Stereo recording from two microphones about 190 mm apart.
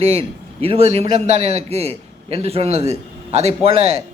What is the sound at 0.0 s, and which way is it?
A man's voice, 30° right (ahead or behind).